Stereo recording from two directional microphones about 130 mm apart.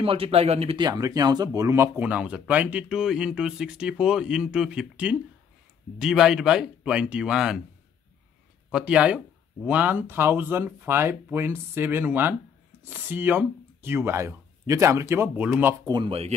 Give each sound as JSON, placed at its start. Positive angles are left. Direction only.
{"t": 0.0, "sound": "speech", "side_deg": -45}
{"t": 0.7, "sound": "speech", "side_deg": -30}
{"t": 8.7, "sound": "speech", "side_deg": -10}
{"t": 15.8, "sound": "speech", "side_deg": -35}
{"t": 16.1, "sound": "speech", "side_deg": -50}